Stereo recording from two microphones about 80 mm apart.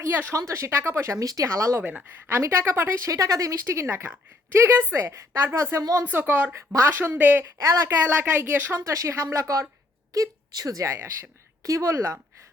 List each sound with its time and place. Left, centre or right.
0.0 s speech: right
0.3 s speech: right
1.8 s speech: right
6.1 s speech: right
6.5 s speech: right
8.8 s a woman's voice: right